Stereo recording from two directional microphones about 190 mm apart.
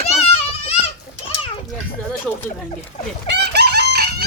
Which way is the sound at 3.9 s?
55° right (ahead or behind).